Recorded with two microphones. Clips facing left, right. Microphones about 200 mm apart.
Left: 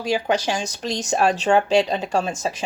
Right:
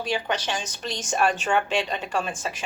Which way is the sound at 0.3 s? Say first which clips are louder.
Left 6 dB; 35° left (ahead or behind).